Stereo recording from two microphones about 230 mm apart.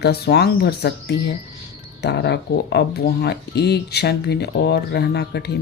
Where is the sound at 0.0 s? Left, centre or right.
Left.